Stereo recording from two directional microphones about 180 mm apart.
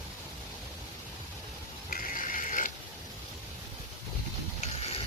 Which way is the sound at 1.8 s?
50° left (ahead or behind).